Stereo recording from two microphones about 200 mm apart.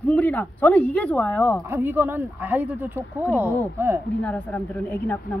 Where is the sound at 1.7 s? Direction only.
10° right (ahead or behind).